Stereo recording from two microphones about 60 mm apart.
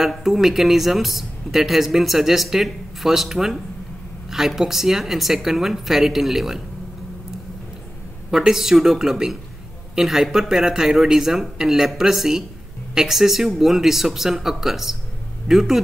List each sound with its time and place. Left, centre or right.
0.0 s speech: centre
8.3 s speech: centre